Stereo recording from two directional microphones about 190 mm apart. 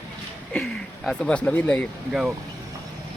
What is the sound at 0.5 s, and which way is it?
A man's voice, 5° left (ahead or behind).